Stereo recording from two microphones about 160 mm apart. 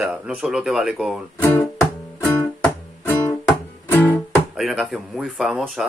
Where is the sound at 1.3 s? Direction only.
15° left (ahead or behind).